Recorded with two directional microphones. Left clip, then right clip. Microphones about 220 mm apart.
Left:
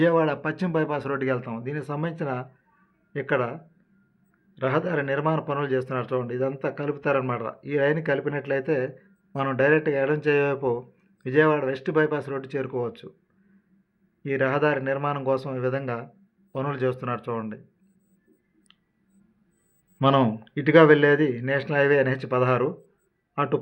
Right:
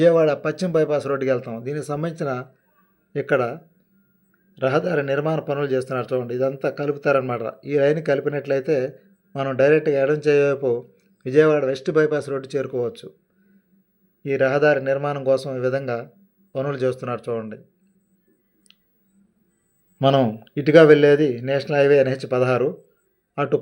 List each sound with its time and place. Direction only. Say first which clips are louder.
0.0 s a man's voice: right 5 dB; 10° right (ahead or behind)
14.2 s a man's voice: right 5 dB; 10° right (ahead or behind)
20.0 s a man's voice: right 3 dB; 10° right (ahead or behind)